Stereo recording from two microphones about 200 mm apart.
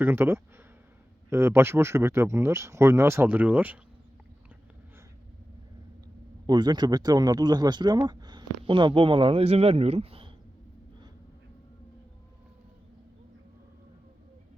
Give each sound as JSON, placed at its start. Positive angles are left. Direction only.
{"t": 0.0, "sound": "speech", "side_deg": -10}
{"t": 6.5, "sound": "speech", "side_deg": -20}